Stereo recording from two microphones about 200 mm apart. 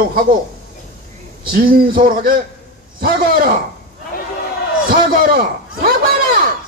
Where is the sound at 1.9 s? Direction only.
45° right (ahead or behind).